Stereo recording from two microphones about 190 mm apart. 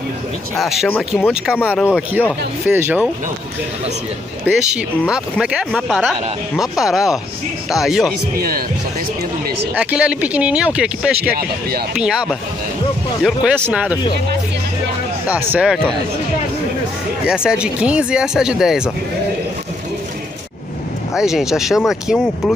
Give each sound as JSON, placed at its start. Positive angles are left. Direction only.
{"t": 0.6, "sound": "speech", "side_deg": 0}
{"t": 4.5, "sound": "speech", "side_deg": -5}
{"t": 8.4, "sound": "speech", "side_deg": -50}
{"t": 9.8, "sound": "speech", "side_deg": -5}
{"t": 15.5, "sound": "speech", "side_deg": -5}
{"t": 17.3, "sound": "speech", "side_deg": -5}
{"t": 21.2, "sound": "speech", "side_deg": 0}